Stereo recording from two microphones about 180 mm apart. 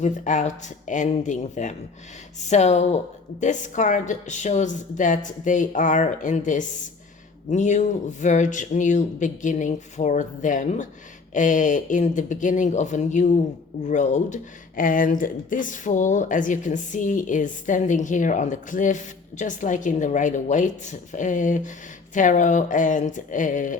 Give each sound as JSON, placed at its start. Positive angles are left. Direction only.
{"t": 0.0, "sound": "speech", "side_deg": 45}